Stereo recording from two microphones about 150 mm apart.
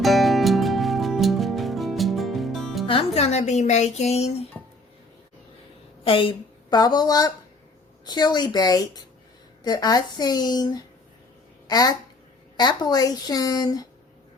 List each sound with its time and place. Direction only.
0.0 s music: centre (ahead or behind)
2.8 s speech: 40° left (ahead or behind)
6.1 s a woman's voice: 35° left (ahead or behind)